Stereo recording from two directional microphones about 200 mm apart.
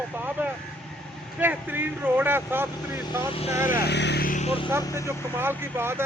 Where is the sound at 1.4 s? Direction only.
10° right (ahead or behind).